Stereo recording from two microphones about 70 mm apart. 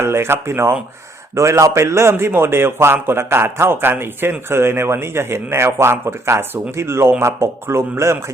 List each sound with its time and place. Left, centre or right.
0.0 s a man's voice: right
1.4 s a man's voice: right